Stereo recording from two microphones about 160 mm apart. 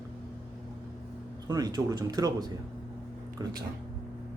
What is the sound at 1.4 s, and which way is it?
Speech, 25° right (ahead or behind).